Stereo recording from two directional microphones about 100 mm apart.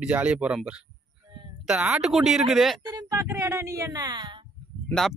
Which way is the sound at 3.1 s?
30° right (ahead or behind).